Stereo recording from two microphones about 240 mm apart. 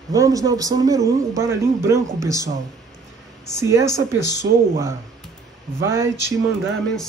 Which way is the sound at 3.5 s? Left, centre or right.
Centre.